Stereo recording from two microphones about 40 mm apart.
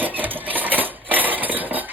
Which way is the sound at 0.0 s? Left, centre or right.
Right.